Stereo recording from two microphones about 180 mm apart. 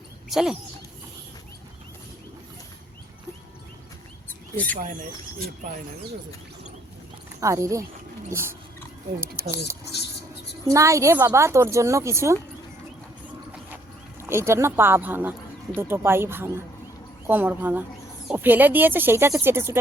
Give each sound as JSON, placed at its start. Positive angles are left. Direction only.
{"t": 0.3, "sound": "speech", "side_deg": 0}
{"t": 4.3, "sound": "rodents", "side_deg": 10}
{"t": 7.4, "sound": "a woman's voice", "side_deg": -15}
{"t": 10.7, "sound": "a woman's voice", "side_deg": -15}
{"t": 14.2, "sound": "a woman's voice", "side_deg": -15}